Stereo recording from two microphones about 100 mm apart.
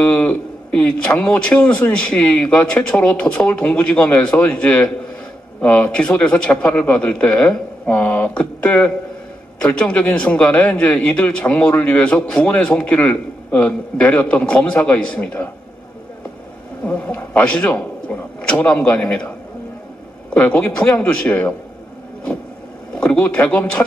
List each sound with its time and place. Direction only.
0.0 s a man's voice: 10° left (ahead or behind)
16.8 s a man's voice: 15° left (ahead or behind)
20.3 s a man's voice: 10° left (ahead or behind)
22.9 s a man's voice: 10° left (ahead or behind)